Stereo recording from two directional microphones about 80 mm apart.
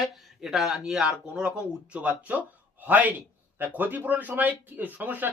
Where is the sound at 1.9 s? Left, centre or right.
Centre.